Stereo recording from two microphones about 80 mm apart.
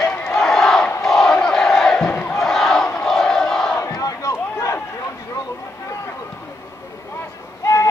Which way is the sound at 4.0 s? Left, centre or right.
Left.